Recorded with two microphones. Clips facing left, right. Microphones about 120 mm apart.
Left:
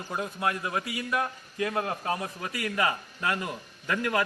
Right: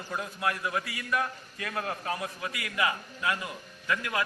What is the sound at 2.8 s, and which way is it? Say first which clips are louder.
Speech: even; 40° left (ahead or behind).